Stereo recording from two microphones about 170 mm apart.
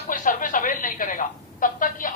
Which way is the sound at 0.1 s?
50° left (ahead or behind).